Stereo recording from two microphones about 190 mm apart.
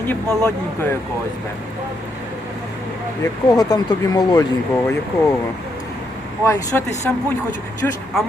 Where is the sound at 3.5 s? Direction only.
20° left (ahead or behind).